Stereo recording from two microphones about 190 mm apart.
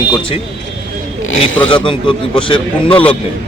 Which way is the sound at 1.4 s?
30° left (ahead or behind).